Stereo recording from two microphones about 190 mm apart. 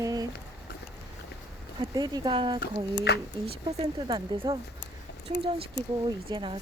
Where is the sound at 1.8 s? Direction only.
20° right (ahead or behind).